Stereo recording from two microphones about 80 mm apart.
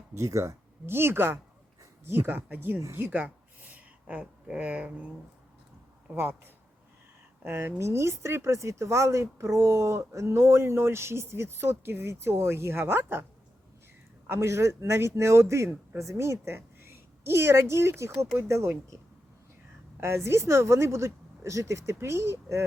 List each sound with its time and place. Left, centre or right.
0.1 s speech: right
3.0 s a sound: right
6.1 s speech: right
14.3 s a woman's voice: right
20.0 s speech: right